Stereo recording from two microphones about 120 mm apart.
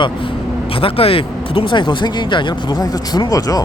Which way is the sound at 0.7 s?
50° left (ahead or behind).